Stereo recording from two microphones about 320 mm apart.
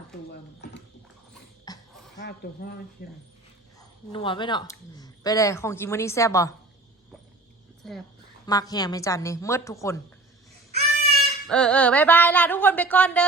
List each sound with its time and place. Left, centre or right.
0.3 s speech: left
1.3 s dog: centre
2.1 s speech: left
4.1 s speech: centre
7.8 s speech: centre
8.4 s speech: centre
10.7 s a sound: centre
11.4 s speech: centre